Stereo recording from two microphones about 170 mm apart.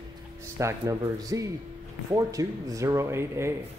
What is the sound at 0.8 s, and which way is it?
A man's voice, 25° right (ahead or behind).